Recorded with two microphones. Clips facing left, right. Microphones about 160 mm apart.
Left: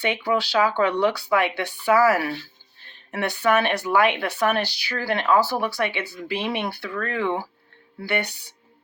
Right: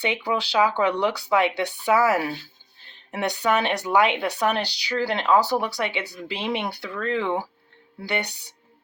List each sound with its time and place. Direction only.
0.0 s speech: 20° right (ahead or behind)